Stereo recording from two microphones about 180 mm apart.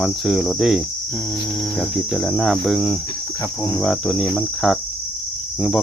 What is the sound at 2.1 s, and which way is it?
Cricket, centre (ahead or behind).